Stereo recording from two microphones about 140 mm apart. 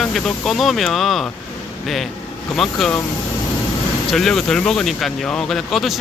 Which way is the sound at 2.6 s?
5° left (ahead or behind).